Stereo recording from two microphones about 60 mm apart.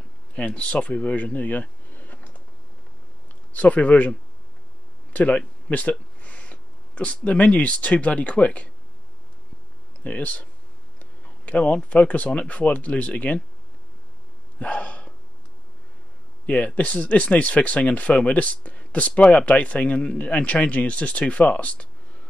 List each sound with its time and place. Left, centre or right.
0.4 s speech: centre
3.5 s speech: left
5.1 s speech: left
10.0 s speech: left
14.6 s a sound: left
16.4 s speech: left